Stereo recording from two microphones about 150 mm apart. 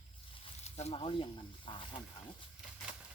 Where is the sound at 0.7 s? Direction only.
40° left (ahead or behind).